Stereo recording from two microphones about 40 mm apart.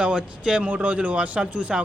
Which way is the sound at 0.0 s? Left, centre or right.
Right.